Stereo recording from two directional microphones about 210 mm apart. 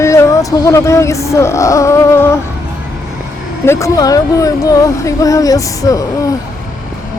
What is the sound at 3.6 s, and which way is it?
Speech, 15° left (ahead or behind).